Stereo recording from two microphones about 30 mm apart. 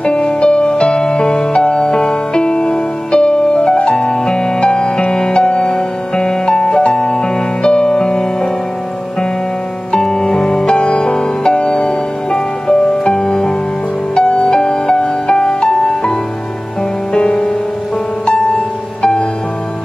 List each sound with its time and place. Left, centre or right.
0.0 s music: left
9.9 s music: left